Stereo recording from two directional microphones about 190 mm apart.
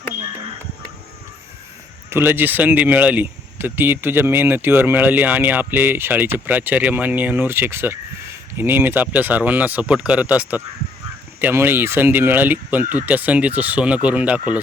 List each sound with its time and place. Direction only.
2.0 s speech: 10° right (ahead or behind)